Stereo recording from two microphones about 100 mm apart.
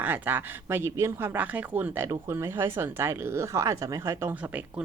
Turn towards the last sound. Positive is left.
turn(degrees=-25)  # may be behind; listen again after turning